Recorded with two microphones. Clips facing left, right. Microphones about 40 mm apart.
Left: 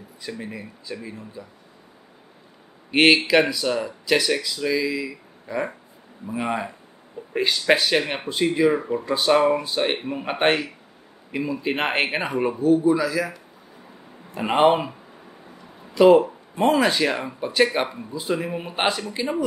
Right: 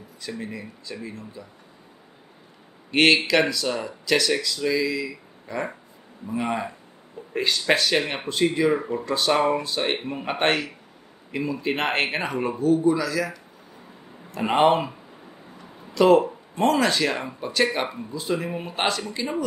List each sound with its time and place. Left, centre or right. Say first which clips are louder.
0.2 s speech: even; centre
2.9 s speech: left 2 dB; centre
17.7 s speech: left 3 dB; centre
18.1 s speech: left 1 dB; centre